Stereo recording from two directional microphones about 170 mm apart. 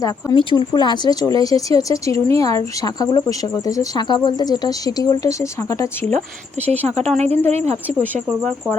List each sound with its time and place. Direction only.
0.3 s speech: 30° left (ahead or behind)
6.8 s speech: 40° right (ahead or behind)
7.9 s speech: 10° left (ahead or behind)